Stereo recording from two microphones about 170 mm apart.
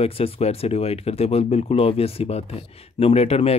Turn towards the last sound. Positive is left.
turn(degrees=35)  # may be behind; listen again after turning